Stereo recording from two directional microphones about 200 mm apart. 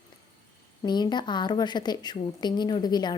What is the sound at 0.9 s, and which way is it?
A woman's voice, 20° left (ahead or behind).